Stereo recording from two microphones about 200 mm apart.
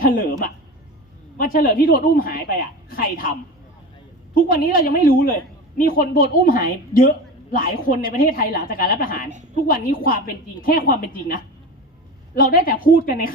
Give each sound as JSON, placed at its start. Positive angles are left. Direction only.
{"t": 0.0, "sound": "a woman's voice", "side_deg": 45}
{"t": 4.4, "sound": "a woman's voice", "side_deg": 45}